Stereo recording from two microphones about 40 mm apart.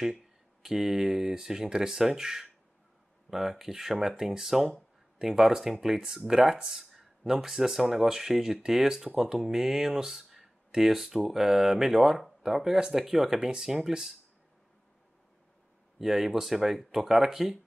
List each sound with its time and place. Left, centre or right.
0.1 s speech: centre
6.7 s a sound: centre
7.4 s speech: centre
16.0 s speech: centre